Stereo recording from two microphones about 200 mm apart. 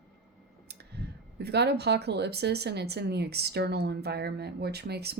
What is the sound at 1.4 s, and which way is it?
Speech, 55° right (ahead or behind).